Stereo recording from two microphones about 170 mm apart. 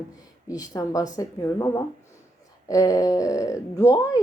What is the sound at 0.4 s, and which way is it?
Speech, 20° left (ahead or behind).